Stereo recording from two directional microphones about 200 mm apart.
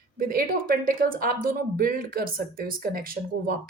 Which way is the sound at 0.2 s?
45° right (ahead or behind).